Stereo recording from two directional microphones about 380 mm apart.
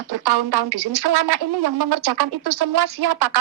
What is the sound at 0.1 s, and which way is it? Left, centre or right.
Speech, right.